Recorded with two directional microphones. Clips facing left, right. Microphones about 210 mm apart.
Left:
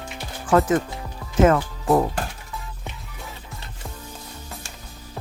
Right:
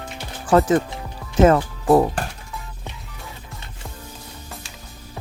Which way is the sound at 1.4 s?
35° right (ahead or behind).